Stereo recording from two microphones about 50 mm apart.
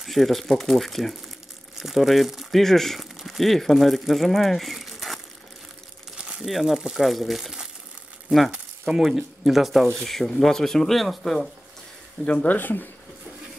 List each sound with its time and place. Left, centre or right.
0.0 s speech: centre
6.1 s crumpling: centre
6.4 s speech: centre
8.5 s a sound: centre
9.0 s speech: centre
12.4 s speech: left